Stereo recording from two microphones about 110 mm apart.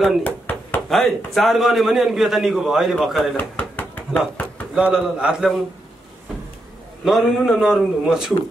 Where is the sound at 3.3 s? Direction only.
15° left (ahead or behind).